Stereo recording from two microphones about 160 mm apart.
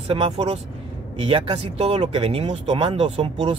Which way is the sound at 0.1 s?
40° right (ahead or behind).